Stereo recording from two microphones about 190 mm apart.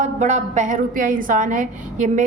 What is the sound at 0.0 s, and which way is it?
A woman's voice, 40° right (ahead or behind).